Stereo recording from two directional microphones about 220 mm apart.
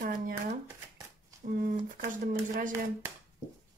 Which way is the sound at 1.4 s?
40° right (ahead or behind).